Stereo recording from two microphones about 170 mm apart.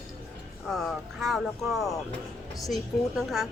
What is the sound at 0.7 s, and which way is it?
Speech, centre (ahead or behind).